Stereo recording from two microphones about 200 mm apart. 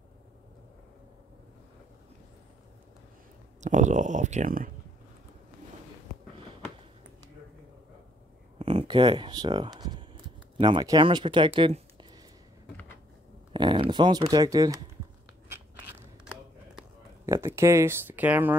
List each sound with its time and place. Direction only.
3.6 s speech: 35° right (ahead or behind)
8.5 s speech: 25° right (ahead or behind)
13.5 s speech: 20° right (ahead or behind)
17.3 s speech: 15° right (ahead or behind)